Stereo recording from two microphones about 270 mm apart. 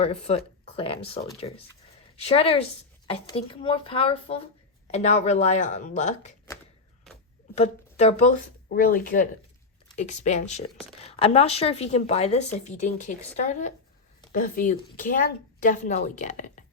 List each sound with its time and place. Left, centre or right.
0.0 s a woman's voice: left
7.5 s a woman's voice: left